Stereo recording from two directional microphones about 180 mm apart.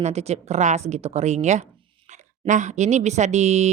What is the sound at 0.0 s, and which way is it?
Speech, 35° right (ahead or behind).